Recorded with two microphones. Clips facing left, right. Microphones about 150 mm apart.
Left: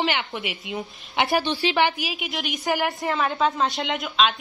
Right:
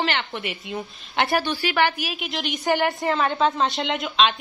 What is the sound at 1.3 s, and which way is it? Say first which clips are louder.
Speech: left 2 dB; 20° left (ahead or behind).